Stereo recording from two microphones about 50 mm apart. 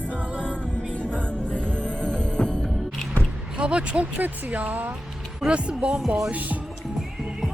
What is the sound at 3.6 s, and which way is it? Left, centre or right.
Speech, right.